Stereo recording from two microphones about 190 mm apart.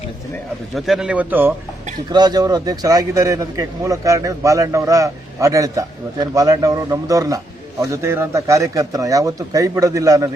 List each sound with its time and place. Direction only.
0.8 s a man's voice: centre (ahead or behind)
2.1 s a man's voice: 20° right (ahead or behind)